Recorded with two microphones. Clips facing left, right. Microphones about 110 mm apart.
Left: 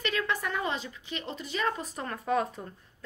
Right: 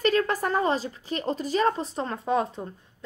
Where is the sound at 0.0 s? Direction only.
40° right (ahead or behind).